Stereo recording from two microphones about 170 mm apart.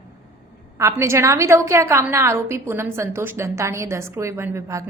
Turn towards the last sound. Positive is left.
turn(degrees=-15)  # may be behind; listen again after turning